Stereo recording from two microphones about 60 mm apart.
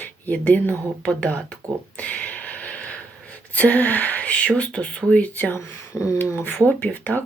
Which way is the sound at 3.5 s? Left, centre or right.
Left.